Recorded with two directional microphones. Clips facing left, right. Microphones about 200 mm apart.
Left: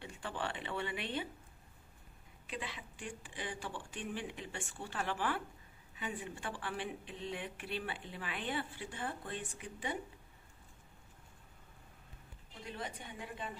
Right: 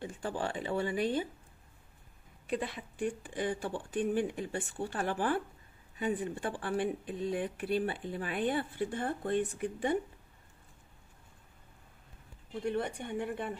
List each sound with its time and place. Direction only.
0.0 s speech: 40° right (ahead or behind)
2.5 s speech: 50° right (ahead or behind)
12.6 s a woman's voice: 65° right (ahead or behind)